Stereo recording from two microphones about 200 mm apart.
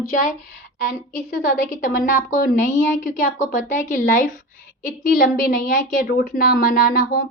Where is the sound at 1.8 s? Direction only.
40° left (ahead or behind).